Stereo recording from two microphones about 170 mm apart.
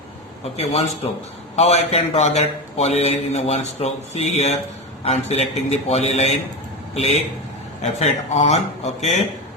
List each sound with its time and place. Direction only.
0.5 s a man's voice: 35° left (ahead or behind)